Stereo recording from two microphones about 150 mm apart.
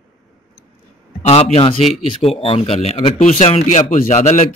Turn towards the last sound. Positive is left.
turn(degrees=50)  # may be behind; listen again after turning